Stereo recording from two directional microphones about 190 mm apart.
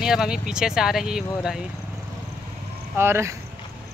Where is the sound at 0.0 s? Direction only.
5° right (ahead or behind).